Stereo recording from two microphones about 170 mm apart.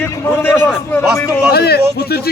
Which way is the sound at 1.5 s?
70° left (ahead or behind).